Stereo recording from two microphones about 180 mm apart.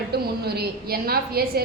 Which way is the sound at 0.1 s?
60° right (ahead or behind).